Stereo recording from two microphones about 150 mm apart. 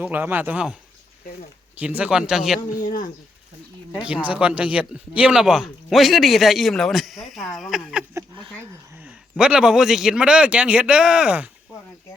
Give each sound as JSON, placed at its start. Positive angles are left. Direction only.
{"t": 0.0, "sound": "speech", "side_deg": -10}
{"t": 3.9, "sound": "speech", "side_deg": -5}
{"t": 8.1, "sound": "a sound", "side_deg": -25}
{"t": 9.4, "sound": "speech", "side_deg": -5}